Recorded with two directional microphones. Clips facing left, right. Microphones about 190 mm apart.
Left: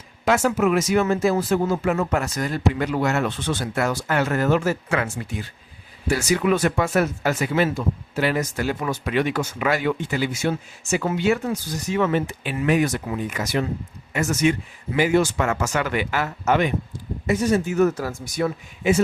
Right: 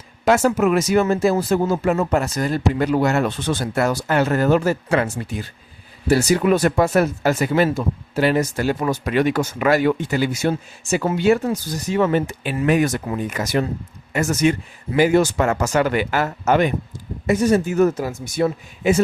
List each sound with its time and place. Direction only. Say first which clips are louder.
0.3 s speech: right 3 dB; 40° right (ahead or behind)
17.8 s speech: right 2 dB; 20° right (ahead or behind)
18.8 s speech: right 2 dB; 40° right (ahead or behind)